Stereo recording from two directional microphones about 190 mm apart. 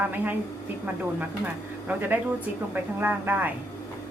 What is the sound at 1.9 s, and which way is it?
Speech, 10° right (ahead or behind).